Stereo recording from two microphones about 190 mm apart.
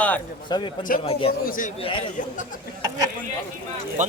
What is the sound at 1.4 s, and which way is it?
Speech, 45° left (ahead or behind).